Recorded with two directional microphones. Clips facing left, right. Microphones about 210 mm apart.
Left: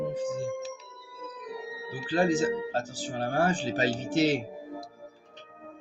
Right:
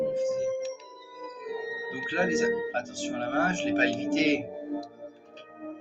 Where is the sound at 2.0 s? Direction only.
35° left (ahead or behind).